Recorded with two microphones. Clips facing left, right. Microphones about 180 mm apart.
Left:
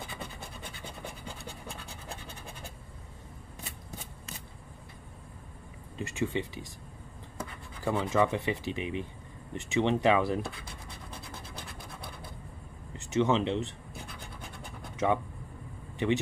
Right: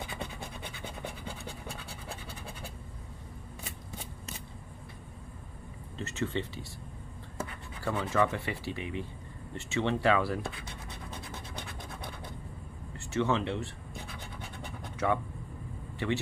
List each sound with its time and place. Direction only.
5.9 s speech: 15° left (ahead or behind)
7.8 s speech: 15° left (ahead or behind)
11.5 s scratch: 5° left (ahead or behind)
12.9 s speech: 20° left (ahead or behind)
15.0 s speech: 20° left (ahead or behind)